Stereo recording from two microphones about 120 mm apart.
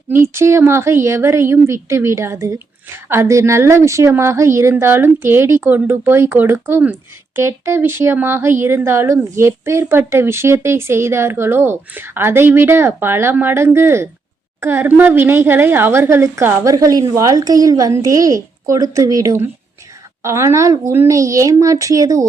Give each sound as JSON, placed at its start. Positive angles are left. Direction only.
{"t": 0.1, "sound": "a woman's voice", "side_deg": -20}